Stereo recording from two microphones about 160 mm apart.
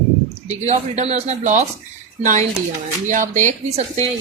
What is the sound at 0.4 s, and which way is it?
Speech, 45° right (ahead or behind).